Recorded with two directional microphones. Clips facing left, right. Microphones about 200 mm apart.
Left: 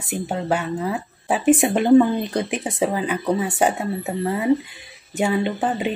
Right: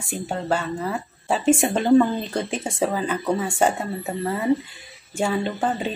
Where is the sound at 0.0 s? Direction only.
20° left (ahead or behind).